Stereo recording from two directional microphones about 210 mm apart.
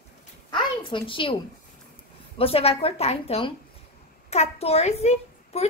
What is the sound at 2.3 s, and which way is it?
A woman's voice, 25° left (ahead or behind).